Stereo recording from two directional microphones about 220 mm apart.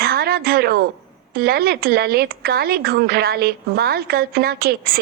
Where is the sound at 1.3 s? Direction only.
45° right (ahead or behind).